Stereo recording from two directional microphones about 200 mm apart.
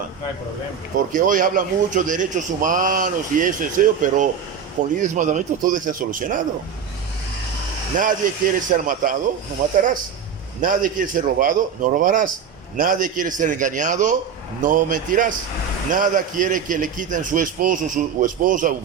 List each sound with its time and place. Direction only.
1.1 s a man's voice: 40° right (ahead or behind)
7.9 s speech: 40° right (ahead or behind)
10.6 s a man's voice: 40° right (ahead or behind)